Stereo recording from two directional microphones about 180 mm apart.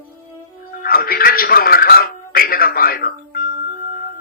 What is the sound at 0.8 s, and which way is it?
Speech, 55° left (ahead or behind).